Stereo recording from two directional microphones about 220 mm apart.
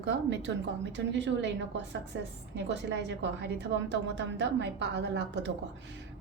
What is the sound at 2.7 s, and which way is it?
A woman's voice, 50° right (ahead or behind).